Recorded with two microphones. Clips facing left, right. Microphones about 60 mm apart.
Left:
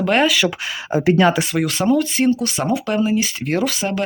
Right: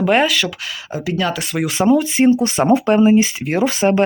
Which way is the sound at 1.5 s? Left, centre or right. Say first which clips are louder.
Right 2 dB; centre.